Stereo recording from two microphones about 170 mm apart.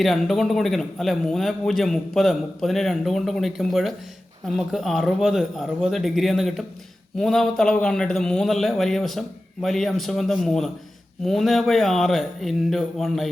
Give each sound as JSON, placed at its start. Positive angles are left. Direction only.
{"t": 0.0, "sound": "a man's voice", "side_deg": 0}